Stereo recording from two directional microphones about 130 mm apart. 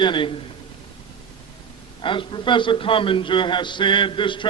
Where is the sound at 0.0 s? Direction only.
40° left (ahead or behind).